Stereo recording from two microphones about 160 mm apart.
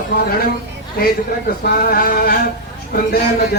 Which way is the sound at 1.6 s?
65° left (ahead or behind).